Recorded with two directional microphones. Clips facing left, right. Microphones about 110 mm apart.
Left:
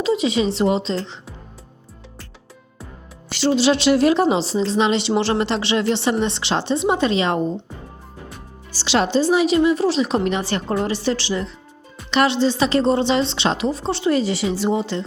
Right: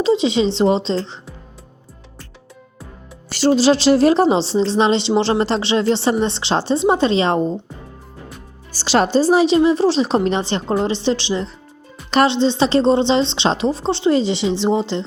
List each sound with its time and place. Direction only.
0.0 s a woman's voice: 25° right (ahead or behind)
3.2 s speech: 40° right (ahead or behind)
8.7 s a woman's voice: 45° right (ahead or behind); by 15.0 s 30° right (ahead or behind)